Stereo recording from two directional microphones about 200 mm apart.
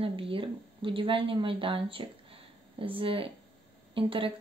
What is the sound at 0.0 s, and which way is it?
Speech, 25° right (ahead or behind).